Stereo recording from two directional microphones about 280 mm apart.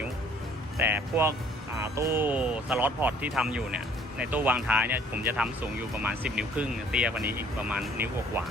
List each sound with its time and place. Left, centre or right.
0.8 s speech: centre